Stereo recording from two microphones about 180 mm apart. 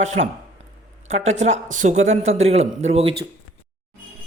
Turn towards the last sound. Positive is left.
turn(degrees=-35)  # may be behind; listen again after turning